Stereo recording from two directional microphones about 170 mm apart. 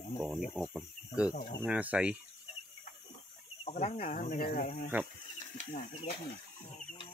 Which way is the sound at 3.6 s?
40° left (ahead or behind).